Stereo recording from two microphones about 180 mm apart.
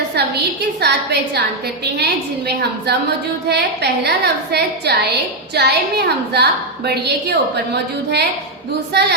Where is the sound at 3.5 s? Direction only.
65° right (ahead or behind).